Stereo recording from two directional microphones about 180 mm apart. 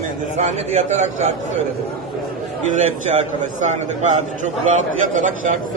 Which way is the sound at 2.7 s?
40° right (ahead or behind).